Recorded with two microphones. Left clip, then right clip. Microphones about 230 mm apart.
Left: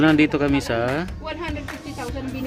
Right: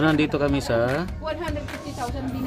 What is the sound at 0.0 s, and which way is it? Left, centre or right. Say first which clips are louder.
Speech: left 3 dB; centre.